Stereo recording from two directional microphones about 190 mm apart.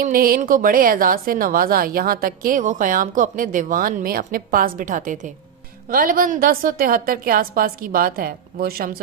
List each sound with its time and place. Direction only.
0.0 s a woman's voice: 50° right (ahead or behind)